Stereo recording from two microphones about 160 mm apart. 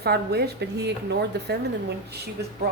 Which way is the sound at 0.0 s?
90° right.